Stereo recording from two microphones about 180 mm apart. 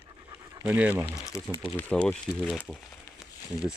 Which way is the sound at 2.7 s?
5° right (ahead or behind).